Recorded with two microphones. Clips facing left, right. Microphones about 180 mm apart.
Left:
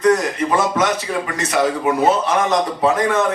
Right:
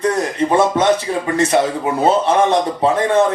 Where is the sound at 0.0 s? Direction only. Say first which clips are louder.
Left 1 dB; 30° right (ahead or behind).